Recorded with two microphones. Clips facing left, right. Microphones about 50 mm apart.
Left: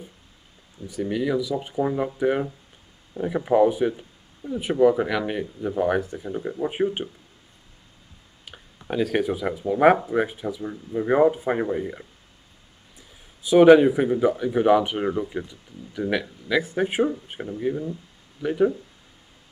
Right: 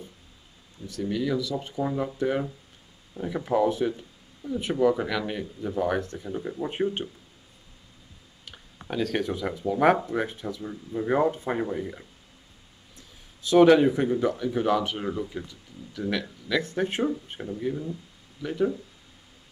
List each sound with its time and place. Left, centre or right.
0.8 s speech: centre
8.8 s speech: centre